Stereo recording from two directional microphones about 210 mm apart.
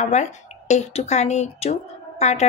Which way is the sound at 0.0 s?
35° left (ahead or behind).